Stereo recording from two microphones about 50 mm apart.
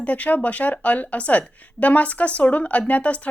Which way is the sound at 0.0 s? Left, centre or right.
Left.